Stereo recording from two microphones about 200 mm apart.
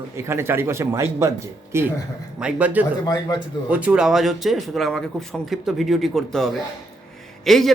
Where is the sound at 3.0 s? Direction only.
20° left (ahead or behind).